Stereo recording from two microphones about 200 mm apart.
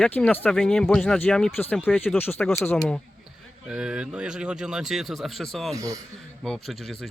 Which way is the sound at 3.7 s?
5° right (ahead or behind).